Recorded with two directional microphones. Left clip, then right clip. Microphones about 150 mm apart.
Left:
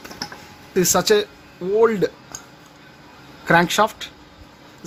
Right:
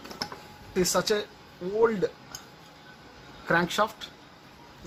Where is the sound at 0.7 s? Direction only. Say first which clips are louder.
Left 9 dB; 85° left.